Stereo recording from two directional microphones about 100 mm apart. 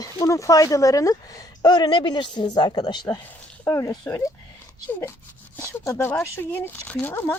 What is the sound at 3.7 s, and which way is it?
Speech, 35° left (ahead or behind).